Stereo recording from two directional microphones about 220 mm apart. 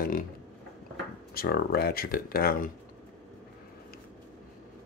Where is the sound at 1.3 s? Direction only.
45° left (ahead or behind).